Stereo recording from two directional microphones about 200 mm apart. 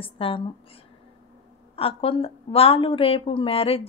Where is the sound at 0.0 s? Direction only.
25° left (ahead or behind).